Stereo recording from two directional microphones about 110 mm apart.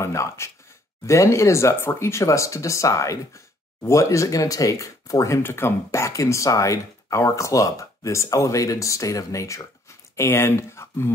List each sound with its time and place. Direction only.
0.0 s speech: 25° left (ahead or behind)